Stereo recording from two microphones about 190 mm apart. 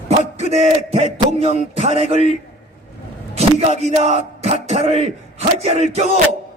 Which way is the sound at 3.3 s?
35° right (ahead or behind).